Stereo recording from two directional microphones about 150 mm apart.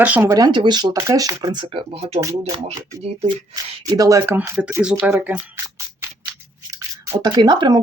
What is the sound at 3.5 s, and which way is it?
Speech, 25° right (ahead or behind).